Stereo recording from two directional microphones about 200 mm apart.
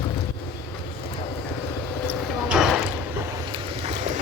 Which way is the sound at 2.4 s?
5° right (ahead or behind).